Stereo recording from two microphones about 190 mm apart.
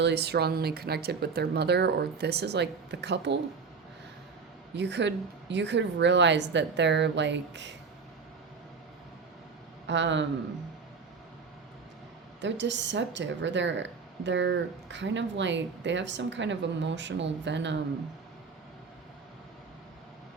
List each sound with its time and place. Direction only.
0.0 s speech: 60° right (ahead or behind)
4.7 s speech: 65° right (ahead or behind)
9.8 s a man's voice: 70° right (ahead or behind)
12.4 s speech: 70° right (ahead or behind)